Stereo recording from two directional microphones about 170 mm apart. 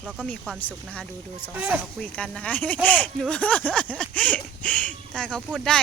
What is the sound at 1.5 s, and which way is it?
Speech, 10° right (ahead or behind).